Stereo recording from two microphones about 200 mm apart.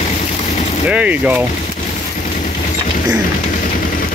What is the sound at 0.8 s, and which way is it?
Speech, 5° right (ahead or behind).